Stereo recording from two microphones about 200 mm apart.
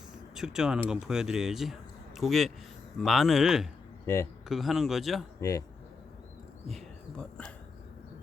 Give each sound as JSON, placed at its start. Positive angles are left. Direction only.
{"t": 0.3, "sound": "speech", "side_deg": -5}
{"t": 4.0, "sound": "speech", "side_deg": 15}
{"t": 4.4, "sound": "speech", "side_deg": 0}
{"t": 5.4, "sound": "a man's voice", "side_deg": 15}
{"t": 6.7, "sound": "speech", "side_deg": 0}